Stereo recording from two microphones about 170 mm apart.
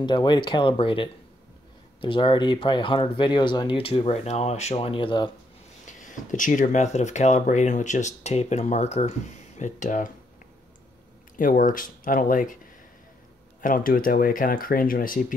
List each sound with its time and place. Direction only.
0.0 s speech: 25° left (ahead or behind)
5.9 s speech: 50° left (ahead or behind)
11.3 s speech: 50° left (ahead or behind)
13.6 s speech: 55° left (ahead or behind)